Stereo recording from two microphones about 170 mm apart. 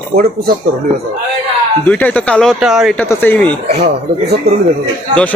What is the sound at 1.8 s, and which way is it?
A man's voice, 5° left (ahead or behind).